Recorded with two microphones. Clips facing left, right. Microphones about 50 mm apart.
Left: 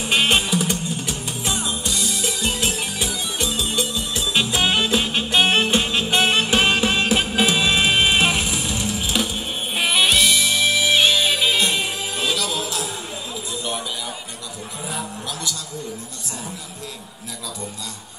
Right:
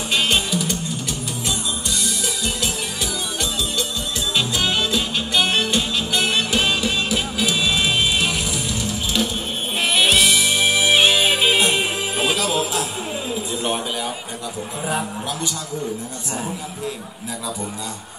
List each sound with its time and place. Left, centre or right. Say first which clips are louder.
0.1 s music: left 2 dB; left
2.6 s music: left 1 dB; left
9.8 s music: right 1 dB; centre
10.5 s music: right 1 dB; right